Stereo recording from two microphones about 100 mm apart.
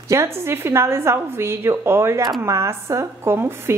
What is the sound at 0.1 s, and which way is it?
A woman's voice, 25° right (ahead or behind).